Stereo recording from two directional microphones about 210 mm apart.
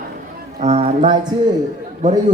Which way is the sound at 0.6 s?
30° right (ahead or behind).